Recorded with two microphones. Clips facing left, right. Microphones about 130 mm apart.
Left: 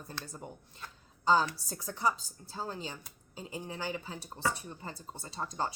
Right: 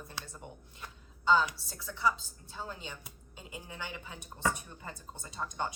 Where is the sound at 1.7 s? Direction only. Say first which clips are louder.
Even; 40° left (ahead or behind).